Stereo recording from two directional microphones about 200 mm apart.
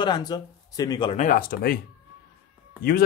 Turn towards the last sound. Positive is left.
turn(degrees=50)  # may be behind; listen again after turning